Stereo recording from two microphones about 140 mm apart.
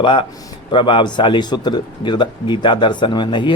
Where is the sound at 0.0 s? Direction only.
35° left (ahead or behind).